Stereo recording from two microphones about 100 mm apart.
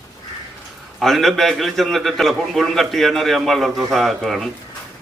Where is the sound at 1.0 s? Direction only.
Centre (ahead or behind).